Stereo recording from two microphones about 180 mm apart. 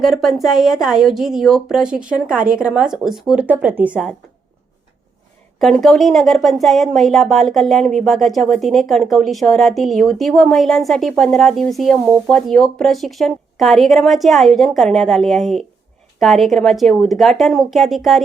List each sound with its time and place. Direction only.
0.0 s speech: centre (ahead or behind)
5.5 s speech: centre (ahead or behind)